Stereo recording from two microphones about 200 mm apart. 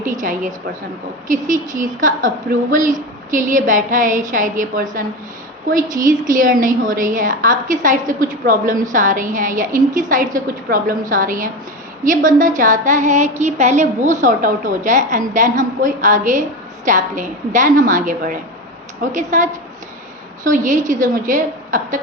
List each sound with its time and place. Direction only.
0.0 s a woman's voice: 40° right (ahead or behind)
1.7 s a woman's voice: 40° right (ahead or behind)